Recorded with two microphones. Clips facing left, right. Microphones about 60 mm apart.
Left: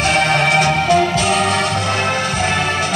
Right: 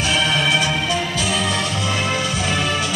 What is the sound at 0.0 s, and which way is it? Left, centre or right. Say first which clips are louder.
Music: left 4 dB; left.